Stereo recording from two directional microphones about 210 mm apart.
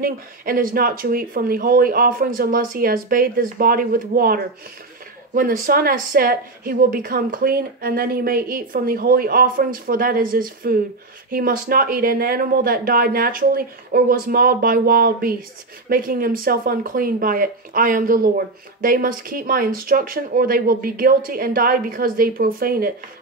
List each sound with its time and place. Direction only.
0.0 s speech: 45° right (ahead or behind)